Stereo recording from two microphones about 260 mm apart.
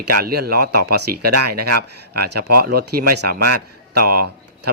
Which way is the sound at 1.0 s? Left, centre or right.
Right.